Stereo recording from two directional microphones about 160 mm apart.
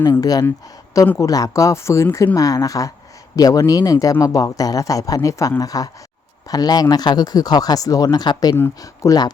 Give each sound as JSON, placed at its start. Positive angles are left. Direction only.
{"t": 0.0, "sound": "speech", "side_deg": 25}